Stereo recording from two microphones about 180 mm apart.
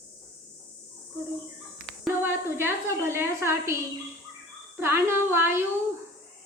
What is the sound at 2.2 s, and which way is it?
A woman's voice, 15° right (ahead or behind).